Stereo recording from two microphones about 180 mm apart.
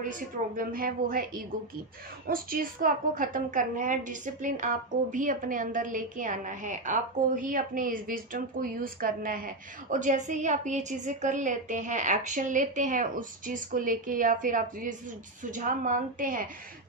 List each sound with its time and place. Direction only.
0.0 s a woman's voice: 50° right (ahead or behind)